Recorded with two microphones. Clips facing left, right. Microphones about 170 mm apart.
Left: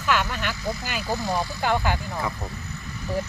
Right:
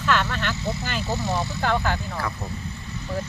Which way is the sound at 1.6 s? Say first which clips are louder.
Even; 10° left (ahead or behind).